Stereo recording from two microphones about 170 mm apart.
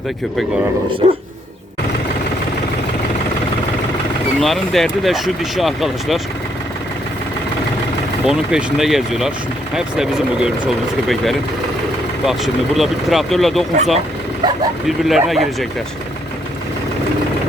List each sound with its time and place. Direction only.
4.4 s speech: centre (ahead or behind)
8.2 s speech: 5° right (ahead or behind)
12.2 s speech: centre (ahead or behind)
14.4 s speech: 25° right (ahead or behind)
14.8 s speech: centre (ahead or behind)